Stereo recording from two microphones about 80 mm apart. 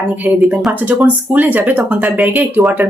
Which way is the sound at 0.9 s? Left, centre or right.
Centre.